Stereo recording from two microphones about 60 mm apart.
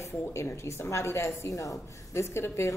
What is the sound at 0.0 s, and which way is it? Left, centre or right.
A woman's voice, left.